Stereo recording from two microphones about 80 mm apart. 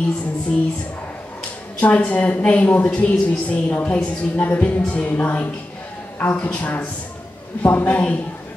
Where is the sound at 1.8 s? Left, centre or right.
Centre.